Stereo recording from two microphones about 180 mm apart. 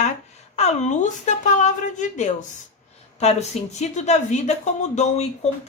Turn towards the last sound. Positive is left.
turn(degrees=35)  # may be behind; listen again after turning